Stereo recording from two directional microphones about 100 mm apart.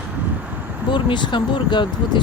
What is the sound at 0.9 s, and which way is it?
Speech, 50° left (ahead or behind).